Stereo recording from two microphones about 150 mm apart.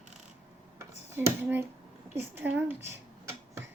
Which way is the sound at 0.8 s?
15° right (ahead or behind).